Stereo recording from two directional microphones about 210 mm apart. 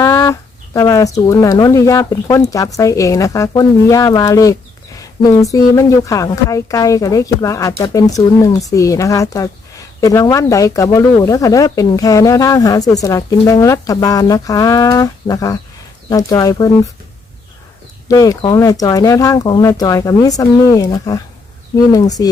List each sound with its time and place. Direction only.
0.0 s a woman's voice: 15° left (ahead or behind)
18.1 s a woman's voice: 15° left (ahead or behind)